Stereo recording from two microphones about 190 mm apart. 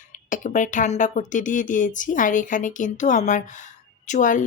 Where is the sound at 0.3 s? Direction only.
40° left (ahead or behind).